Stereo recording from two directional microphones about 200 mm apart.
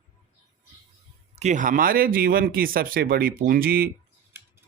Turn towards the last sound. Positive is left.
turn(degrees=-50)  # may be behind; listen again after turning